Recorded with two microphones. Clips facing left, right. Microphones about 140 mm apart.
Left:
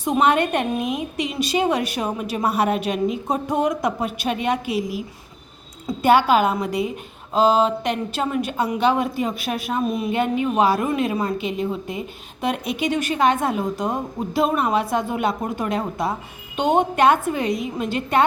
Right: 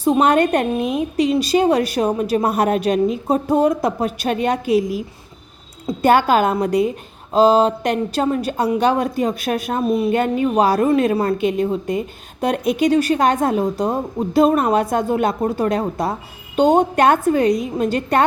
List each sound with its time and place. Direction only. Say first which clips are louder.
0.0 s a woman's voice: right 4 dB; 35° right (ahead or behind)
6.0 s a woman's voice: right 2 dB; 45° right (ahead or behind)